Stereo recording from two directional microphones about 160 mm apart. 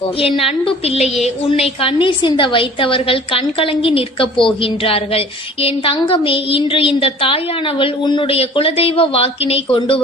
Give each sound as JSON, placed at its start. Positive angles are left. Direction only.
{"t": 0.2, "sound": "a woman's voice", "side_deg": 35}